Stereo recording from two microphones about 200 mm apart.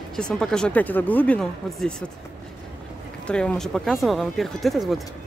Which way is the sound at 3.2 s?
5° left (ahead or behind).